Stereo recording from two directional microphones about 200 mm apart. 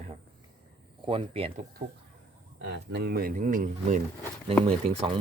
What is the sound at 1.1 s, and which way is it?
Speech, 30° right (ahead or behind).